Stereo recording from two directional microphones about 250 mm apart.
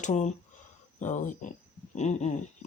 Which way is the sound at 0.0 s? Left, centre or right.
Left.